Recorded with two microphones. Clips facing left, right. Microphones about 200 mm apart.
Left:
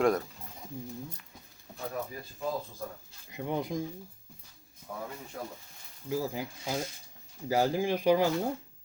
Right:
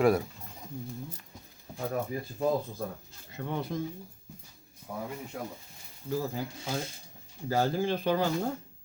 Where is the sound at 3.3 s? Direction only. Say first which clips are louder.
Left 1 dB; 15° left (ahead or behind).